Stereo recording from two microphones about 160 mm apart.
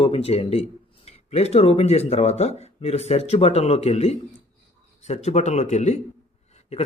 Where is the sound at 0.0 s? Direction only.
40° left (ahead or behind).